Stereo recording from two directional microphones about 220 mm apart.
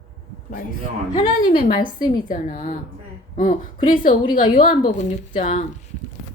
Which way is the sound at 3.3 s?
35° left (ahead or behind).